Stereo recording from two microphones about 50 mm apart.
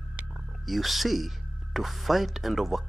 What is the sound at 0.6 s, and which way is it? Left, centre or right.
Speech, centre.